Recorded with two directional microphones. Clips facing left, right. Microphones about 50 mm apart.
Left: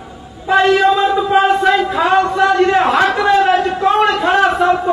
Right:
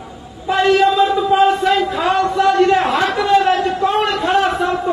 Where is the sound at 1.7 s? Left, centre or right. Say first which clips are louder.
Left 3 dB; centre.